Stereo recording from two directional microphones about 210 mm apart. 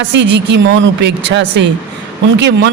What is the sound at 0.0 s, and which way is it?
A man's voice, 55° right (ahead or behind).